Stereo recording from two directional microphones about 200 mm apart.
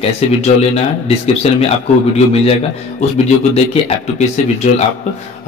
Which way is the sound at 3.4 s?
30° left (ahead or behind).